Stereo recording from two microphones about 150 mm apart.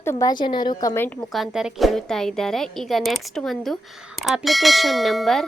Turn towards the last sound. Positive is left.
turn(degrees=0)  # may be behind; listen again after turning